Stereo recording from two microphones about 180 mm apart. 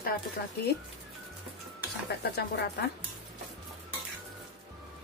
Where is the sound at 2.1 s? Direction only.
60° left (ahead or behind).